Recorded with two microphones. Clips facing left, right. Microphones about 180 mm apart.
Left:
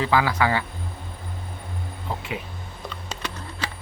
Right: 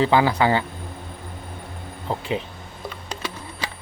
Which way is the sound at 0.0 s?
30° right (ahead or behind).